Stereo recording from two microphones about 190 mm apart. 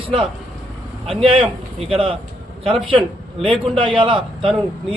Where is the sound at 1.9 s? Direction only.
30° right (ahead or behind).